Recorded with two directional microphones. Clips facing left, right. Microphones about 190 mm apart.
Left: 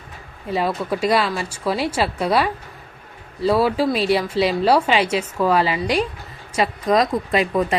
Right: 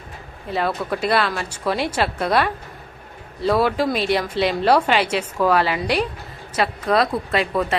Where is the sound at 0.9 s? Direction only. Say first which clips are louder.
Left 1 dB; 10° left (ahead or behind).